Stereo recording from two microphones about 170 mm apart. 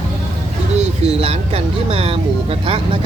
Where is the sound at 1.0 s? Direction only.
35° right (ahead or behind).